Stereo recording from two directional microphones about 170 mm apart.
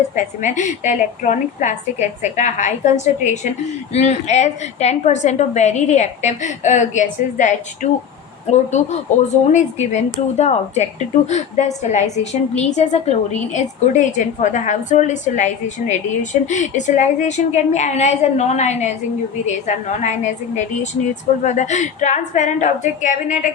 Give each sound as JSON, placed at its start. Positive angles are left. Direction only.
{"t": 0.2, "sound": "a woman's voice", "side_deg": 45}